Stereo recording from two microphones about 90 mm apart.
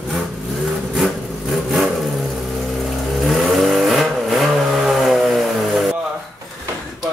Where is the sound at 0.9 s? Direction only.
Centre (ahead or behind).